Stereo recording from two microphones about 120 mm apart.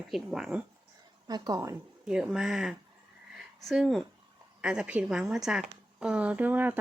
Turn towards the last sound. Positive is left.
turn(degrees=-15)  # may be behind; listen again after turning